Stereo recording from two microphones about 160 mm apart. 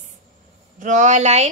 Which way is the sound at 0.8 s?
50° right (ahead or behind).